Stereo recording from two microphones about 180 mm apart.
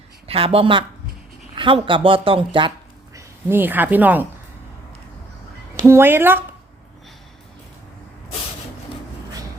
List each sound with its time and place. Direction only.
0.3 s a woman's voice: 30° right (ahead or behind)
3.2 s speech: 10° right (ahead or behind)
5.8 s a woman's voice: 10° right (ahead or behind)